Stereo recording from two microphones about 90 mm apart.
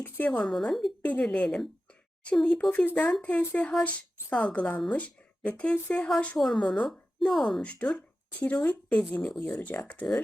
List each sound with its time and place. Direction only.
0.0 s a woman's voice: 15° left (ahead or behind)
0.4 s a woman's voice: 5° left (ahead or behind)
1.0 s a woman's voice: 15° left (ahead or behind)
7.6 s a woman's voice: 15° left (ahead or behind)
9.4 s a woman's voice: 15° left (ahead or behind)